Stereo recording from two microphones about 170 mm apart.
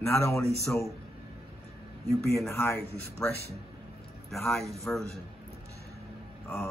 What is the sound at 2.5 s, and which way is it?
Speech, 10° left (ahead or behind).